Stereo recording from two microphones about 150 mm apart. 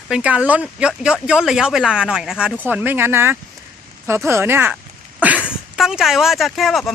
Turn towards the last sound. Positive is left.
turn(degrees=0)  # may be behind; listen again after turning